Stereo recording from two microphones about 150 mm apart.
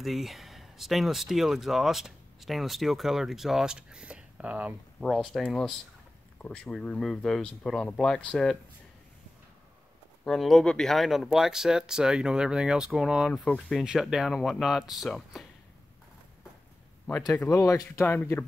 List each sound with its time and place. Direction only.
0.0 s speech: centre (ahead or behind)
10.2 s speech: centre (ahead or behind)
17.5 s speech: 20° left (ahead or behind)